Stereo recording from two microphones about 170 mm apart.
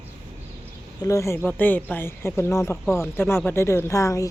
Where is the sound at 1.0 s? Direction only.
20° left (ahead or behind).